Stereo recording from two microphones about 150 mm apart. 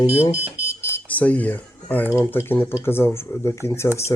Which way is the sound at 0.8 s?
15° left (ahead or behind).